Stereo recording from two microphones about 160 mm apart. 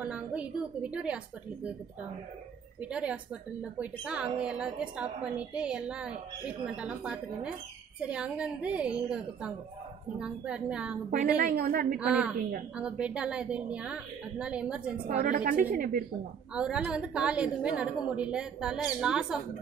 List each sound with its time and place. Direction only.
0.0 s a woman's voice: 5° right (ahead or behind)
2.8 s a woman's voice: 10° right (ahead or behind)
11.1 s a woman's voice: 55° right (ahead or behind)
12.0 s a woman's voice: 5° right (ahead or behind)
15.1 s a woman's voice: 55° right (ahead or behind)
16.5 s a woman's voice: 5° right (ahead or behind)